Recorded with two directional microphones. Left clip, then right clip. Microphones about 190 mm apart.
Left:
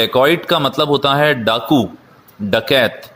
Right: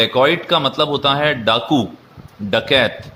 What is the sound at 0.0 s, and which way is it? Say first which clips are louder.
A man's voice: left 1 dB; 30° left (ahead or behind).